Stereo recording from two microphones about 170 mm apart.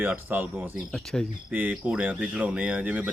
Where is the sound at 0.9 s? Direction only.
5° left (ahead or behind).